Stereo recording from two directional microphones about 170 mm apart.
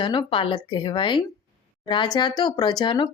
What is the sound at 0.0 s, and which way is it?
Speech, 30° left (ahead or behind).